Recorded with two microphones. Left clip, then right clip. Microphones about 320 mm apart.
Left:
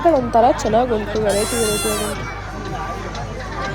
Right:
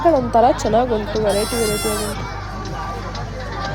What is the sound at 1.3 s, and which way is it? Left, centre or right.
Speech, right.